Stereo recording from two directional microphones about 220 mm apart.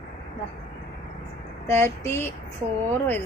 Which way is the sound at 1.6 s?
10° left (ahead or behind).